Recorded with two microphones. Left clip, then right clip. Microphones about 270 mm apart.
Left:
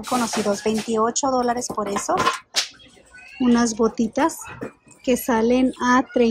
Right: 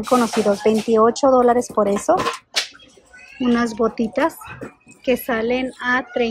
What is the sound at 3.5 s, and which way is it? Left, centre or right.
Speech, centre.